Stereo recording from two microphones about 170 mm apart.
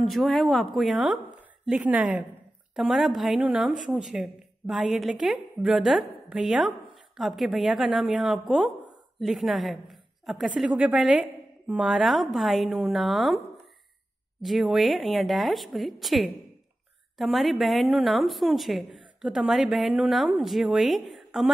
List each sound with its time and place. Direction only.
0.0 s a woman's voice: centre (ahead or behind)
14.4 s a woman's voice: centre (ahead or behind)